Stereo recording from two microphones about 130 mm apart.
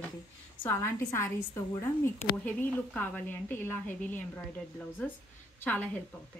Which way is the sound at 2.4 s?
10° left (ahead or behind).